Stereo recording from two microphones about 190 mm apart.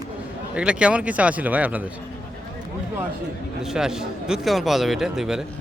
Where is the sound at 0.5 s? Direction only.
5° right (ahead or behind).